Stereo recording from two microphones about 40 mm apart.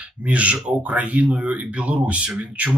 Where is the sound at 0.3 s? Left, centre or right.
Right.